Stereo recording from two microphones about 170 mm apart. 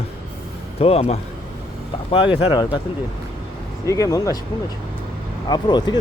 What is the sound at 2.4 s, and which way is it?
Speech, 25° left (ahead or behind).